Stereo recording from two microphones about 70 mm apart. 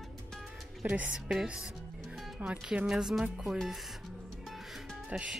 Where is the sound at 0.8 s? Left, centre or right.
Centre.